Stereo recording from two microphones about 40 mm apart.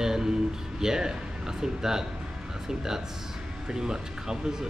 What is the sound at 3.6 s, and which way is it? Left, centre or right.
Speech, centre.